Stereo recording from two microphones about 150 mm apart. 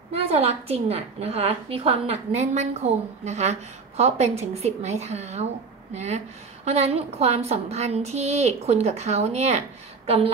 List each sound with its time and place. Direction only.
0.1 s a woman's voice: 45° right (ahead or behind)